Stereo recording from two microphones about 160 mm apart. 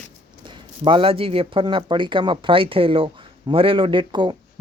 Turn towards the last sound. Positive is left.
turn(degrees=-30)  # may be behind; listen again after turning